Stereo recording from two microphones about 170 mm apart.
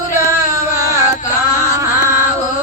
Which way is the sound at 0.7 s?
15° right (ahead or behind).